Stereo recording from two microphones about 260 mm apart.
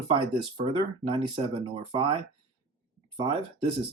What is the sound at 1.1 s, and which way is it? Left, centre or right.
Speech, right.